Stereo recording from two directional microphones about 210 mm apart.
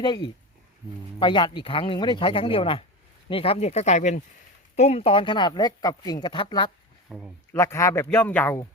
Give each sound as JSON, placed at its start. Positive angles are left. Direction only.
{"t": 0.0, "sound": "speech", "side_deg": 20}
{"t": 7.1, "sound": "speech", "side_deg": -5}
{"t": 7.5, "sound": "speech", "side_deg": 15}